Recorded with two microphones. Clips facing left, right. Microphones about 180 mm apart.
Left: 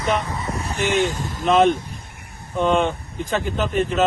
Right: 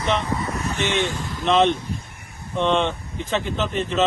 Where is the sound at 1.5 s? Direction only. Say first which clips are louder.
Left 2 dB; centre (ahead or behind).